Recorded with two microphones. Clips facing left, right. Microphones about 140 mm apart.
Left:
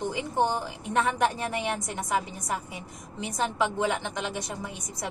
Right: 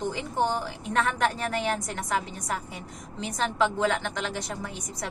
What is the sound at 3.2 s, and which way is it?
A woman's voice, 15° left (ahead or behind).